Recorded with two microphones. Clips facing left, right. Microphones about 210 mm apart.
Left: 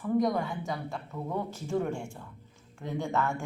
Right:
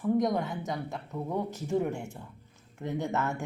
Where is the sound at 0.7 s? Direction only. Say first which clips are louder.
Right 1 dB; 20° right (ahead or behind).